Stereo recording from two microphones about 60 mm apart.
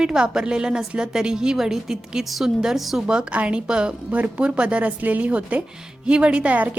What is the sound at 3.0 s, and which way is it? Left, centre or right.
A woman's voice, centre.